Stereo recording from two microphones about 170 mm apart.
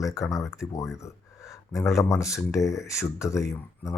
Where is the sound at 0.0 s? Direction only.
20° left (ahead or behind).